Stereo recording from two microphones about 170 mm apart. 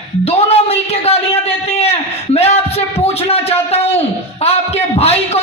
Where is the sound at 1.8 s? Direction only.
35° left (ahead or behind).